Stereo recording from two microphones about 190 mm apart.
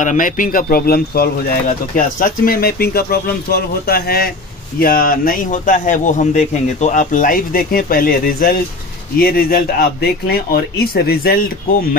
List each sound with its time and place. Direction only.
0.0 s speech: 45° left (ahead or behind)